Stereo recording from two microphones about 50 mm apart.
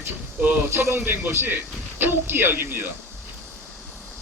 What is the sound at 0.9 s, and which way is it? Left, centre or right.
A man's voice, right.